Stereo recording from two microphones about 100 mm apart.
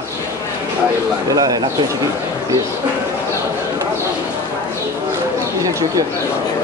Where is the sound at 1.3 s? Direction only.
40° right (ahead or behind).